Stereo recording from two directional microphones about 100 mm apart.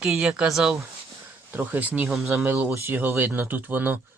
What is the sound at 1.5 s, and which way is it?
Speech, 20° right (ahead or behind).